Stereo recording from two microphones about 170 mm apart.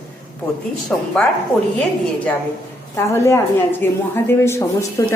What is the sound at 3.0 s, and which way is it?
A woman's voice, 15° left (ahead or behind).